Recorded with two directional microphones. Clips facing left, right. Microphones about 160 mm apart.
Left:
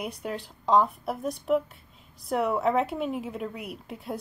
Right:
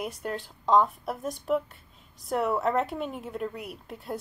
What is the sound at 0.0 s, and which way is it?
Speech, centre (ahead or behind).